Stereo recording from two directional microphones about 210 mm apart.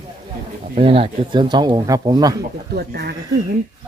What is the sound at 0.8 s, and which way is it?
Speech, 25° right (ahead or behind).